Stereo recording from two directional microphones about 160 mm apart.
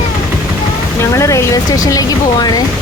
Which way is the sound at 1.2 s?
20° left (ahead or behind).